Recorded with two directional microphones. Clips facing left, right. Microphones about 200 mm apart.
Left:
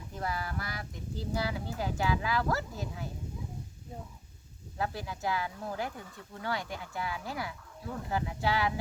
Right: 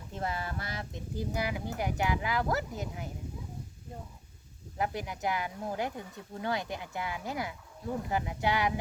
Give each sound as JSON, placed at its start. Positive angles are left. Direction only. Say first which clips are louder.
{"t": 0.1, "sound": "speech", "louder": "right 1 dB", "side_deg": -25}
{"t": 4.8, "sound": "speech", "louder": "right 2 dB", "side_deg": -20}